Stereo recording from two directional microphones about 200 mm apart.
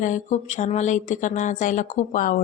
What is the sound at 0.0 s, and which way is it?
A woman's voice, 40° left (ahead or behind).